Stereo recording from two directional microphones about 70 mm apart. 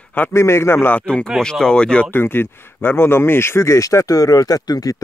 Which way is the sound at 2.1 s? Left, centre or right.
Left.